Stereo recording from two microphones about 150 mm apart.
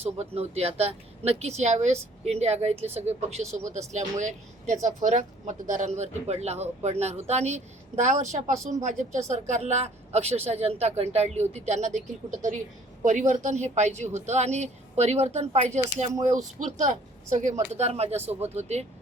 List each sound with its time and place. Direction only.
0.0 s speech: 45° right (ahead or behind)